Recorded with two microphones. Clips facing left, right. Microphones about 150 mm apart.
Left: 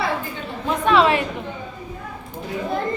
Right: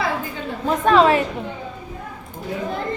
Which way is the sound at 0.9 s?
40° right (ahead or behind).